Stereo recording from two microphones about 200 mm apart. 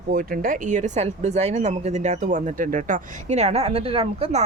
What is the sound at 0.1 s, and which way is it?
Speech, 45° right (ahead or behind).